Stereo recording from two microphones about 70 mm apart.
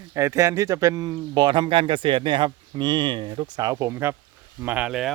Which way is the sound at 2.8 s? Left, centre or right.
Right.